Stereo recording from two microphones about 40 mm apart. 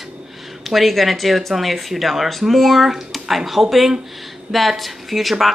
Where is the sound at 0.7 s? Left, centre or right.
Centre.